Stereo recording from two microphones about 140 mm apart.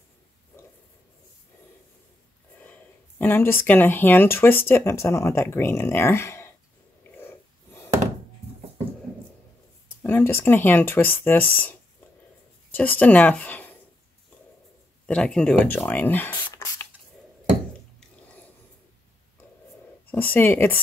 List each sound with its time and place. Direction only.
3.2 s speech: 15° left (ahead or behind)
7.2 s snort: 15° left (ahead or behind)
10.0 s speech: 15° left (ahead or behind)
15.0 s speech: 5° left (ahead or behind)
20.1 s speech: 15° left (ahead or behind)